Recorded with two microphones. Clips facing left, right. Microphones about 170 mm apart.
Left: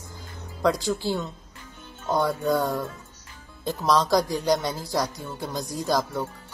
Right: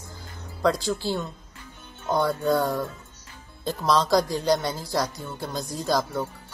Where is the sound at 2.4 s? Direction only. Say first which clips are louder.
Right 1 dB; centre (ahead or behind).